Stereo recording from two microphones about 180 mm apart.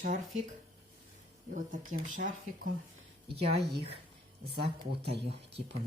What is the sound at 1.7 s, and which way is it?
Speech, 45° right (ahead or behind).